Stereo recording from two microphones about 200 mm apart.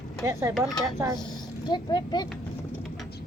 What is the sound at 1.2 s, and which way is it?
Speech, 20° left (ahead or behind).